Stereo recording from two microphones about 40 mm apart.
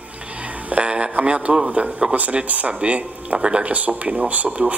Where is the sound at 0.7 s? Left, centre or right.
Right.